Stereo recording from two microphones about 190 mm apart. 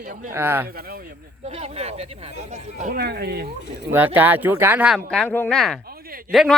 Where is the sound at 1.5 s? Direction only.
35° right (ahead or behind).